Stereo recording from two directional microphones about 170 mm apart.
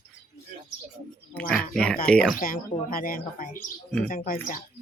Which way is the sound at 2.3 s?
55° left (ahead or behind).